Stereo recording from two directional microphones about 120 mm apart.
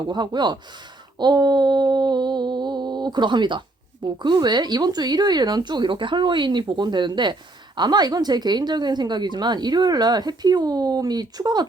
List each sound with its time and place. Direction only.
0.1 s a woman's voice: 35° right (ahead or behind)